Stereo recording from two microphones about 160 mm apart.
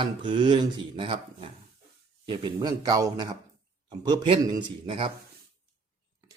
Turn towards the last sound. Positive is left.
turn(degrees=-35)  # may be behind; listen again after turning